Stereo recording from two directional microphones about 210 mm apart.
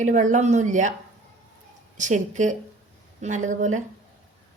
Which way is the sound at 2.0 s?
35° right (ahead or behind).